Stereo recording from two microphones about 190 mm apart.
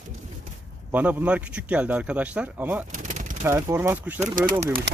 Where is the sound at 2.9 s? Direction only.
40° right (ahead or behind).